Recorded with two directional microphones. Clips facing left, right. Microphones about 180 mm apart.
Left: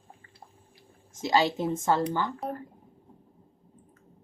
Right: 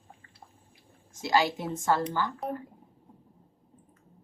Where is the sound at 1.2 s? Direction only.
20° left (ahead or behind).